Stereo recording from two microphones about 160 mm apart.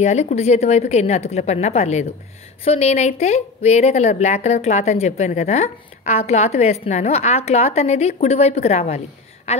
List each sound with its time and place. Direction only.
0.0 s speech: 45° left (ahead or behind)